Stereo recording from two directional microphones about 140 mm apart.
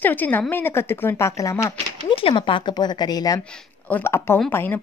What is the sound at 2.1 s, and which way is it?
Speech, 40° left (ahead or behind).